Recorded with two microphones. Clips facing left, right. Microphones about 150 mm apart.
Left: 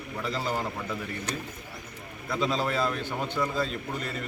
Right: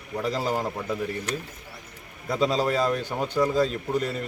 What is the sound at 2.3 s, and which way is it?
A man's voice, 40° right (ahead or behind).